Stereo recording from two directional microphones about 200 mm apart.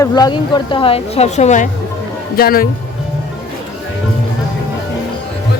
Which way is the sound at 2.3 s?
45° left (ahead or behind).